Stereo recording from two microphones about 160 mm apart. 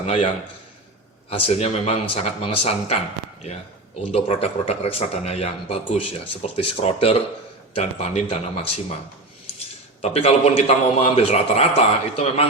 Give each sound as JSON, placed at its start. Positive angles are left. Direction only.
{"t": 0.0, "sound": "a man's voice", "side_deg": 45}
{"t": 1.3, "sound": "a man's voice", "side_deg": 35}
{"t": 10.0, "sound": "speech", "side_deg": 40}